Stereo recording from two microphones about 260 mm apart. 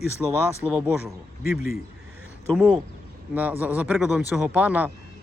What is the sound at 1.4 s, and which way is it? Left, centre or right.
Speech, left.